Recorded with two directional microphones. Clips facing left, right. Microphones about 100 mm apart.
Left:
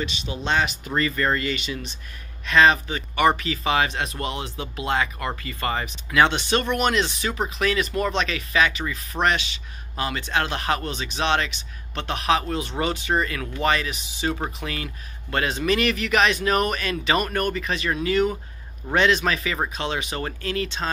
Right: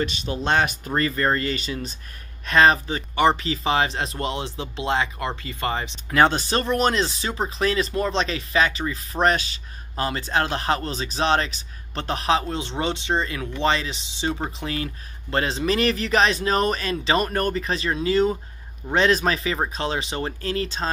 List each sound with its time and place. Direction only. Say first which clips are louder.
0.0 s speech: right 3 dB; 45° right (ahead or behind); by 6.1 s 25° right (ahead or behind)
6.1 s speech: right 1 dB; 40° right (ahead or behind)